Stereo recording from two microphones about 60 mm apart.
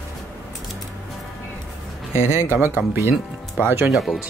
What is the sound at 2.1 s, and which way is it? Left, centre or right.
Speech, left.